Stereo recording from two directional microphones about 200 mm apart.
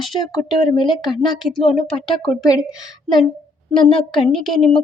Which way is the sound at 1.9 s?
25° left (ahead or behind).